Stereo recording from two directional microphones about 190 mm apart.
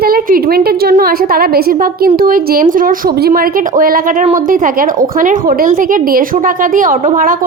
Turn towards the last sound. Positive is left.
turn(degrees=-45)  # may be behind; listen again after turning